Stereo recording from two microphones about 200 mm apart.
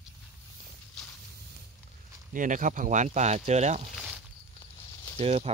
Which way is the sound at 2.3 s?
40° right (ahead or behind).